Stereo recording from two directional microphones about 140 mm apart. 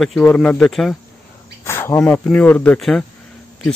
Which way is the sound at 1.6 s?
15° left (ahead or behind).